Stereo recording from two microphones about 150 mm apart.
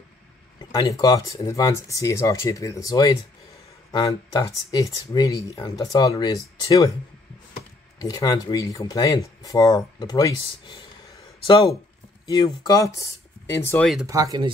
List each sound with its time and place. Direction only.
0.6 s speech: 25° left (ahead or behind)
8.0 s speech: 25° left (ahead or behind)
11.4 s speech: 35° left (ahead or behind); by 13.1 s 20° left (ahead or behind)
14.0 s speech: 25° right (ahead or behind)